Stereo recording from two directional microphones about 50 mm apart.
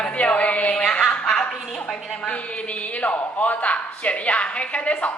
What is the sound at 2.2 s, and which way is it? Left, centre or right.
A man's voice, left.